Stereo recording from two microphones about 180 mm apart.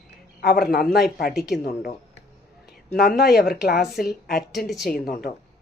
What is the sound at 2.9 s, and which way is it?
Speech, 55° left (ahead or behind).